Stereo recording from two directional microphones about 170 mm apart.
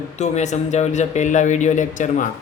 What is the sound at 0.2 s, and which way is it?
Speech, 40° left (ahead or behind).